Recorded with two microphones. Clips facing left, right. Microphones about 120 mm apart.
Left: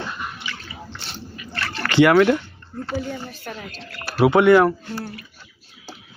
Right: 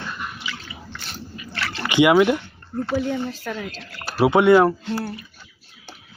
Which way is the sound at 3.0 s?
90° right.